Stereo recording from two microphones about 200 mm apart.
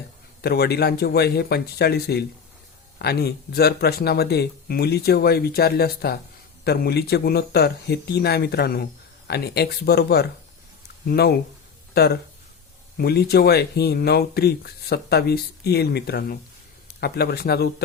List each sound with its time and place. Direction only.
0.4 s speech: 50° left (ahead or behind)
13.0 s speech: 50° left (ahead or behind)